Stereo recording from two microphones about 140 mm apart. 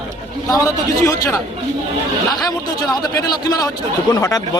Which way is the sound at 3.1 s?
25° left (ahead or behind).